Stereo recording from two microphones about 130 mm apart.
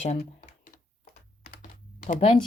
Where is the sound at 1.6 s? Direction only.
90° left.